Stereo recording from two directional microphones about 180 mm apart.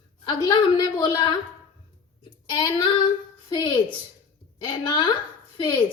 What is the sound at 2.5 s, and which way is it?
A woman's voice, 25° left (ahead or behind).